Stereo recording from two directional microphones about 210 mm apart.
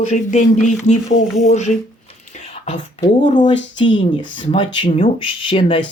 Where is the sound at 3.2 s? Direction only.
35° left (ahead or behind).